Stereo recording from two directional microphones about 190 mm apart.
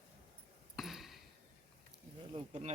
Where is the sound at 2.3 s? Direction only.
35° right (ahead or behind).